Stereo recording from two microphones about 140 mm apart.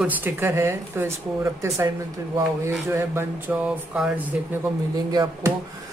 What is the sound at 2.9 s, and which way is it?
Speech, 20° right (ahead or behind).